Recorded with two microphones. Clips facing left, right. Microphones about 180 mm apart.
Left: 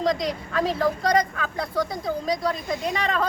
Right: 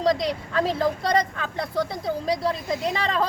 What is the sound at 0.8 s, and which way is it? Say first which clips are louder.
A woman's voice: left 1 dB; 25° right (ahead or behind).